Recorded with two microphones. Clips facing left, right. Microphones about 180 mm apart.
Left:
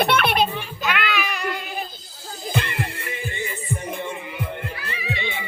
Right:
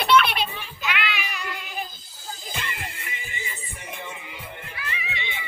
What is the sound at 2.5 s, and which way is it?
Music, 60° left (ahead or behind).